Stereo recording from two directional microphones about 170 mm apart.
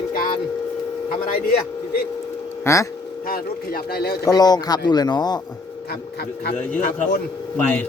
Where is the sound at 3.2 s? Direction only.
60° left (ahead or behind).